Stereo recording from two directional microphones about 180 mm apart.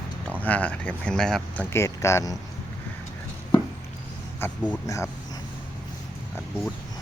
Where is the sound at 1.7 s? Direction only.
15° left (ahead or behind).